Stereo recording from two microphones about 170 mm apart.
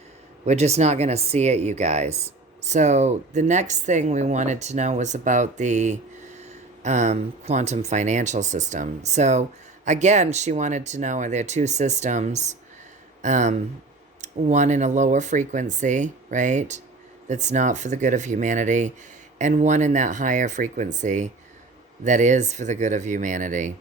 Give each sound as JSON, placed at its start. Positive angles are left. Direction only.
{"t": 0.4, "sound": "speech", "side_deg": -40}